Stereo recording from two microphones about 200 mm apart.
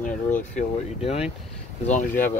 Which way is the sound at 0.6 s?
30° left (ahead or behind).